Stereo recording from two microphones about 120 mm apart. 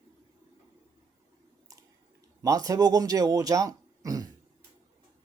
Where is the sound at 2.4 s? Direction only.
30° right (ahead or behind).